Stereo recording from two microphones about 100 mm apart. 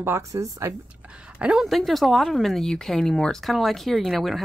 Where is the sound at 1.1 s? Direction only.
10° right (ahead or behind).